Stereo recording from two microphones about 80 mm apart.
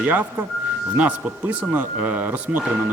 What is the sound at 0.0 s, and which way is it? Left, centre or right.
A man's voice, right.